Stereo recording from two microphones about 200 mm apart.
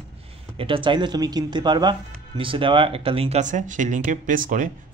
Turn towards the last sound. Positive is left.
turn(degrees=-40)  # may be behind; listen again after turning